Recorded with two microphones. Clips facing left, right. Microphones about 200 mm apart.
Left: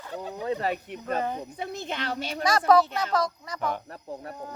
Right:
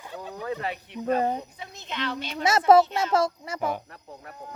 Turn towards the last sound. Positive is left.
turn(degrees=-10)  # may be behind; listen again after turning